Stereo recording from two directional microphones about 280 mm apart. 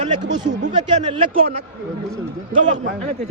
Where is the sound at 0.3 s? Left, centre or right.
Right.